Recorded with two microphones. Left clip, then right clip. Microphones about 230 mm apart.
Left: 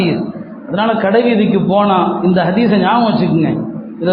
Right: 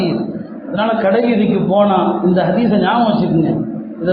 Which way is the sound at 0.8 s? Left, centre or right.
Left.